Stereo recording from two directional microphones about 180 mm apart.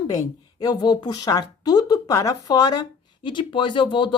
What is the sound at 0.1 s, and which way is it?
A woman's voice, 20° left (ahead or behind).